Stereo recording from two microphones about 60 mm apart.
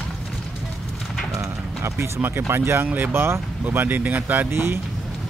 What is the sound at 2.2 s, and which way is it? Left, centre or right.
Speech, right.